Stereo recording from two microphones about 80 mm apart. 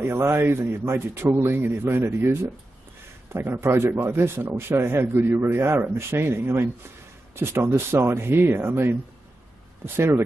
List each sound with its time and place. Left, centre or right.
0.1 s speech: right
3.3 s speech: right